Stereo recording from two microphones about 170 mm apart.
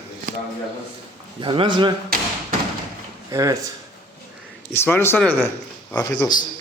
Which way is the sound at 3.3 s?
20° right (ahead or behind).